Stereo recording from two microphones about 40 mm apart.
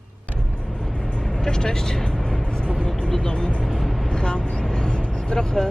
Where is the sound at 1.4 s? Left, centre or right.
Centre.